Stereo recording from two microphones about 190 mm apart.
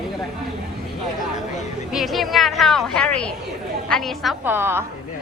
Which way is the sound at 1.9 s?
Centre (ahead or behind).